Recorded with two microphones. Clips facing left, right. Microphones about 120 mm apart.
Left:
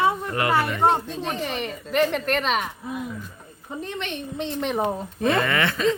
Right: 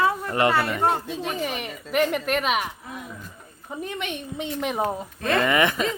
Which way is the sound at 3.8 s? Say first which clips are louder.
Even; 10° right (ahead or behind).